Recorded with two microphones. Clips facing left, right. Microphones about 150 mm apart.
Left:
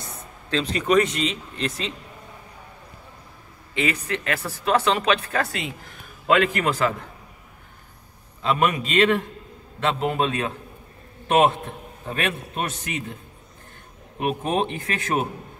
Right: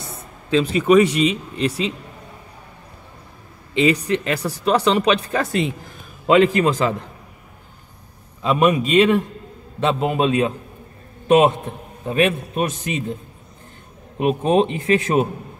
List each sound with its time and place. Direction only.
0.5 s speech: 10° right (ahead or behind)
3.7 s speech: 20° right (ahead or behind)
8.4 s a man's voice: 15° right (ahead or behind)
14.2 s speech: 25° right (ahead or behind)